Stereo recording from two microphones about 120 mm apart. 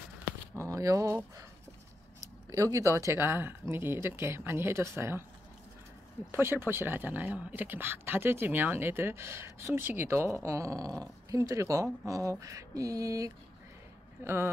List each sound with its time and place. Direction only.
0.6 s speech: 25° right (ahead or behind)
2.5 s speech: 25° right (ahead or behind)
6.3 s speech: 20° right (ahead or behind)